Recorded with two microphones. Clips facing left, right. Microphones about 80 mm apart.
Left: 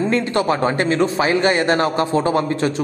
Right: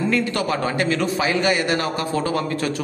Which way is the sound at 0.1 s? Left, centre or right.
Left.